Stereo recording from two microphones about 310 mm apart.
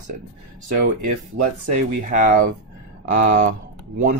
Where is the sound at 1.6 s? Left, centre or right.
Right.